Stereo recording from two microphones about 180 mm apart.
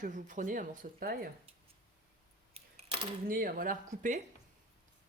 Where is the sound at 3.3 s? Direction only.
55° right (ahead or behind).